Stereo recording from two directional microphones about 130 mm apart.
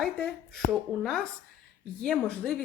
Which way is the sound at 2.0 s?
5° left (ahead or behind).